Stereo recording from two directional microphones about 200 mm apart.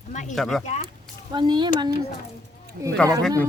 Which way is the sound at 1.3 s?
20° right (ahead or behind).